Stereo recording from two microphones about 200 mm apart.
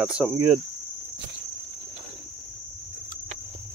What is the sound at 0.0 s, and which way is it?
Cricket, 5° right (ahead or behind).